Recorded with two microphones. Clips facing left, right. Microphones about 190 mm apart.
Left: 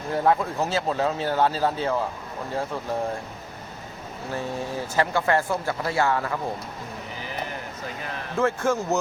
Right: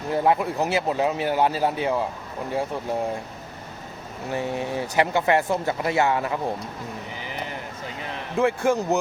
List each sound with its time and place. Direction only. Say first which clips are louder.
0.1 s speech: right 1 dB; 15° right (ahead or behind)
4.3 s speech: right 3 dB; 15° right (ahead or behind)
8.1 s a man's voice: right 2 dB; 15° right (ahead or behind)